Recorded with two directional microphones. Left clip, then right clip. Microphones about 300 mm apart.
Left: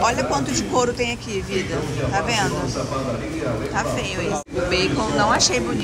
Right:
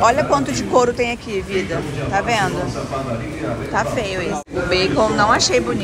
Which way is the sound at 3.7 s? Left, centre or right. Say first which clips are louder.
Right 4 dB; centre.